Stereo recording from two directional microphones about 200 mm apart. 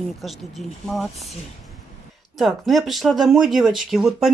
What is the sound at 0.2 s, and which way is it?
Speech, centre (ahead or behind).